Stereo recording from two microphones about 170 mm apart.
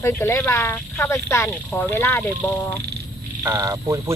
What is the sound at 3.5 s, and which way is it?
Speech, 15° right (ahead or behind).